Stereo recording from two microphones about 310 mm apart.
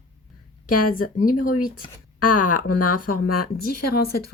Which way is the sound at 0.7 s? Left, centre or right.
Left.